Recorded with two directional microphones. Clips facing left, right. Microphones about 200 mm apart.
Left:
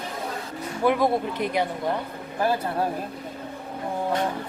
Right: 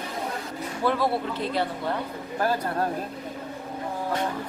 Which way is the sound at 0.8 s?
15° left (ahead or behind).